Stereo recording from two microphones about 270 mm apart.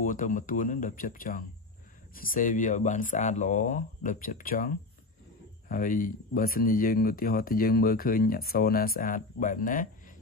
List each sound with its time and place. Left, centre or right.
0.0 s speech: left